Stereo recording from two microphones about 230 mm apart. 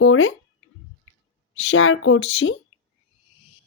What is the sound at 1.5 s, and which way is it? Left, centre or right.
Speech, left.